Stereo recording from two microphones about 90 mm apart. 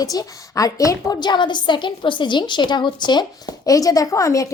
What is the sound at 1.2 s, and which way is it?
A woman's voice, 55° left (ahead or behind).